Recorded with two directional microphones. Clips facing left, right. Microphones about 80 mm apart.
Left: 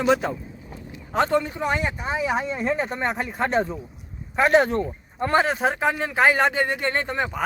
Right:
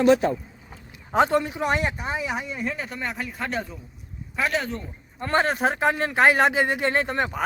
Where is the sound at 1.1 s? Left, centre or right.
Centre.